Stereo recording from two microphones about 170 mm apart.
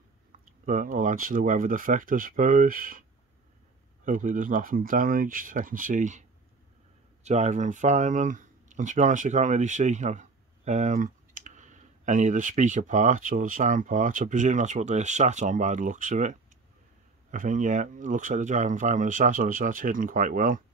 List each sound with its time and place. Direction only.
0.3 s speech: 55° right (ahead or behind)
7.2 s speech: 45° right (ahead or behind)